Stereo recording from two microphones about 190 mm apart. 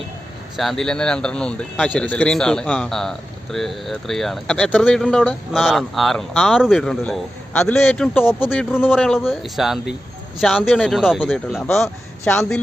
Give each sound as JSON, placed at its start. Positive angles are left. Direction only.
{"t": 0.5, "sound": "a man's voice", "side_deg": 0}